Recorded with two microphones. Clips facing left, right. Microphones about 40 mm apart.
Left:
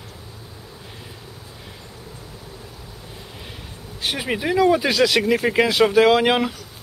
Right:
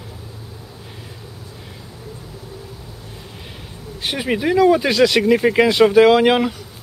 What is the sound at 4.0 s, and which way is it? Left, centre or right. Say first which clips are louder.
Speech: right 3 dB; centre.